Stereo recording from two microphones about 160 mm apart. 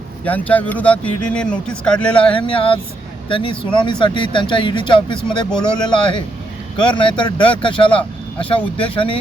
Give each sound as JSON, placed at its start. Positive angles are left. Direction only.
{"t": 0.3, "sound": "speech", "side_deg": 10}
{"t": 2.3, "sound": "speech", "side_deg": 35}